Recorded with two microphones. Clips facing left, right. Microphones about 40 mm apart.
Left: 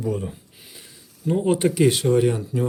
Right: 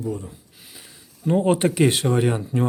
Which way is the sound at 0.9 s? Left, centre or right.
Centre.